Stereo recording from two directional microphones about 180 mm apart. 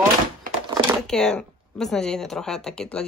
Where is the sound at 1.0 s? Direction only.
5° left (ahead or behind).